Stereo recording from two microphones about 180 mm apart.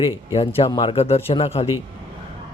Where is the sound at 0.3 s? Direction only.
35° left (ahead or behind).